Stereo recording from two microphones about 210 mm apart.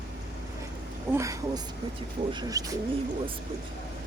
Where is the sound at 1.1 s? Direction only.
15° right (ahead or behind).